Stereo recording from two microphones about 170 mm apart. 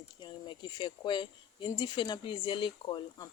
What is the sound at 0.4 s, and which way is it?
Speech, 30° left (ahead or behind).